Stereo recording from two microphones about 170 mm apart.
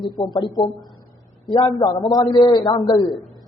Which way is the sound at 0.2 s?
30° left (ahead or behind).